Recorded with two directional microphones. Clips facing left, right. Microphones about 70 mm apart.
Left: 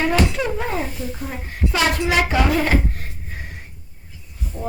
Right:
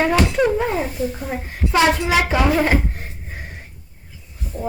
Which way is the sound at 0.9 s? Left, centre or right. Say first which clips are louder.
Right 5 dB; right.